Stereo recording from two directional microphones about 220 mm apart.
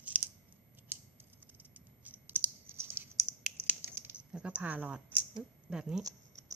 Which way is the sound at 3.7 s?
10° right (ahead or behind).